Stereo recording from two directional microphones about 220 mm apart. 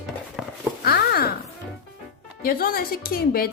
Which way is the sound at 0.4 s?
Centre (ahead or behind).